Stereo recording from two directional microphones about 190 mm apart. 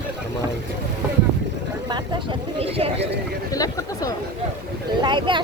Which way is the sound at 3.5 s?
20° left (ahead or behind).